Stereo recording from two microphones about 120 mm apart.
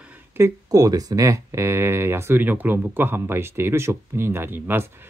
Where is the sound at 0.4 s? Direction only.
30° right (ahead or behind).